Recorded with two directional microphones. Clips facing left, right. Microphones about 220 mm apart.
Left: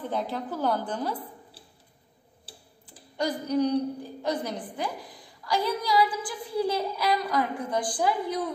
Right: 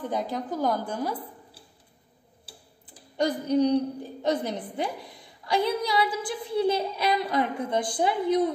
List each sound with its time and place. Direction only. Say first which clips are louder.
0.0 s a woman's voice: right 1 dB; 15° right (ahead or behind)
3.4 s a woman's voice: right 2 dB; 25° right (ahead or behind)